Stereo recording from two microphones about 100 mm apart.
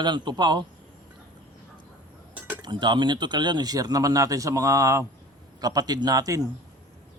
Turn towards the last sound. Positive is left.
turn(degrees=-35)  # may be behind; listen again after turning